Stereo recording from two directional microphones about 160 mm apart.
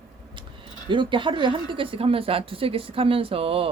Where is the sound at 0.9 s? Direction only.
30° right (ahead or behind).